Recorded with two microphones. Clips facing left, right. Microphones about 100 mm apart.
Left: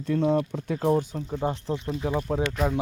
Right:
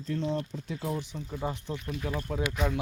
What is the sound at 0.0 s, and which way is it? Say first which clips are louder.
Speech: left 8 dB; 55° left (ahead or behind).